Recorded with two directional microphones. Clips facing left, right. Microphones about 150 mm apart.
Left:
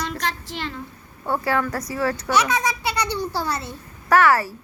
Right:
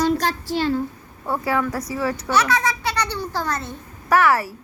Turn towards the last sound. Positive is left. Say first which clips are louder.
# left 1 dB
turn(degrees=0)  # may be behind; listen again after turning